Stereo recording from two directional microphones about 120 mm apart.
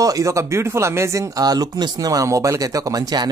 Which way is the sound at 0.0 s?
30° right (ahead or behind).